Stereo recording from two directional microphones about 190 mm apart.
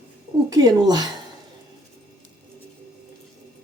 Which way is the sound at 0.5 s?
20° right (ahead or behind).